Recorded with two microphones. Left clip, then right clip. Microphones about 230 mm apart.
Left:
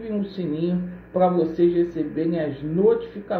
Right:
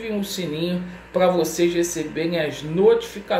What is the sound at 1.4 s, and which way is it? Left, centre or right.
Speech, centre.